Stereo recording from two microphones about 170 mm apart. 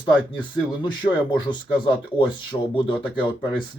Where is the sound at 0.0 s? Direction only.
30° left (ahead or behind).